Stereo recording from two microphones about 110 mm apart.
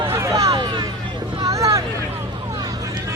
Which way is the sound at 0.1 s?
30° right (ahead or behind).